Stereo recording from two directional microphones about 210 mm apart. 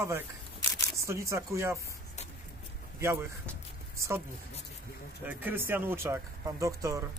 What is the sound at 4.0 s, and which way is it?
Speech, 15° right (ahead or behind).